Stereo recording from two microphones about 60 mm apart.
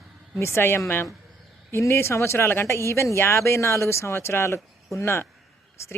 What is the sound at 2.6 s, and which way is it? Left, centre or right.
A man's voice, left.